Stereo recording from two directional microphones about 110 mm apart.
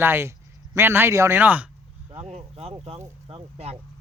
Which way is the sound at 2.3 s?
65° right (ahead or behind).